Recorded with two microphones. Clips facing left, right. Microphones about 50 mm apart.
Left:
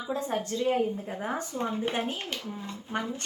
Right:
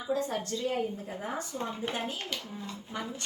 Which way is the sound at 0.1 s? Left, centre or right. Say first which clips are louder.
Even; left.